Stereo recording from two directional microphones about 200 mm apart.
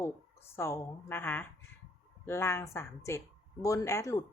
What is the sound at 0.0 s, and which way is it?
A woman's voice, 10° left (ahead or behind).